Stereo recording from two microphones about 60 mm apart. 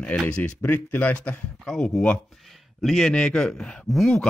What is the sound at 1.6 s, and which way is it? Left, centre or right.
Speech, centre.